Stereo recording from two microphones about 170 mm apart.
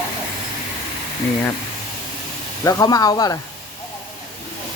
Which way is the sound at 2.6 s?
20° left (ahead or behind).